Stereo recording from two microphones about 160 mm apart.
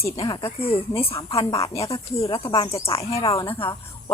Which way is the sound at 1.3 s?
20° left (ahead or behind).